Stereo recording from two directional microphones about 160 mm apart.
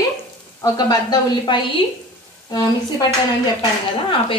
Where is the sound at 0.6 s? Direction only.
25° left (ahead or behind).